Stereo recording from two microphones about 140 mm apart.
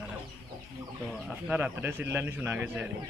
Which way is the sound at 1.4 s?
10° right (ahead or behind).